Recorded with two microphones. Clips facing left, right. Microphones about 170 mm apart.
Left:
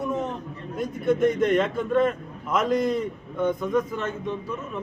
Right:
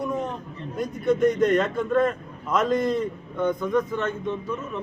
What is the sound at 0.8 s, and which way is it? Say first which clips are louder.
A man's voice: right 1 dB; centre (ahead or behind).